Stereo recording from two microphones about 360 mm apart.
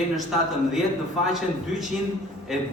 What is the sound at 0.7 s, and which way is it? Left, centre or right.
A man's voice, centre.